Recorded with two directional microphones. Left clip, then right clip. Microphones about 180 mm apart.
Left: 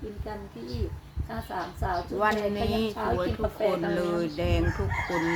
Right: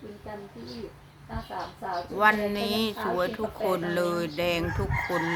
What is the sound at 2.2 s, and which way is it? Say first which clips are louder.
Speech: right 4 dB; 20° right (ahead or behind).